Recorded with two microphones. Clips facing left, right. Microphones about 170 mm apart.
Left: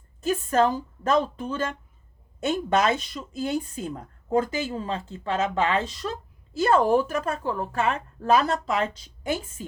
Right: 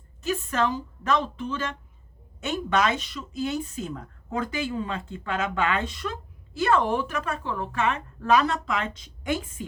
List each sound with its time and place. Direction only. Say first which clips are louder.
0.2 s a woman's voice: left 4 dB; 45° left (ahead or behind)
2.4 s a woman's voice: left 2 dB; 35° left (ahead or behind)
3.1 s speech: left 1 dB; 50° left (ahead or behind)
4.7 s a woman's voice: even; 30° left (ahead or behind)